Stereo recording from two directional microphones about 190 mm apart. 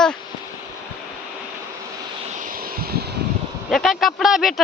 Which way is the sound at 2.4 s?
50° right (ahead or behind).